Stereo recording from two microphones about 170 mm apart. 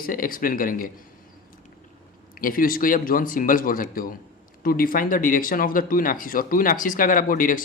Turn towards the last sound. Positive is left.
turn(degrees=55)  # may be behind; listen again after turning